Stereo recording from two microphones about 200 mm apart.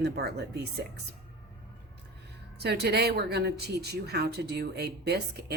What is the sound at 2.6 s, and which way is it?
A woman's voice, 55° right (ahead or behind).